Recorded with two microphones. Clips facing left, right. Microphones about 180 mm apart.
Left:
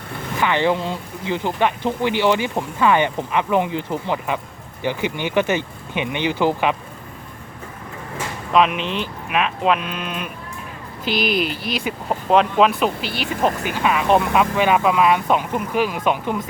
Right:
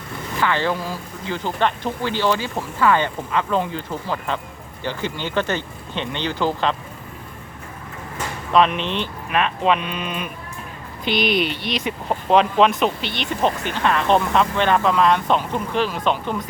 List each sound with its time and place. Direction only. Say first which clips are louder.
0.3 s speech: left 3 dB; 15° left (ahead or behind)
8.5 s speech: even; 5° left (ahead or behind)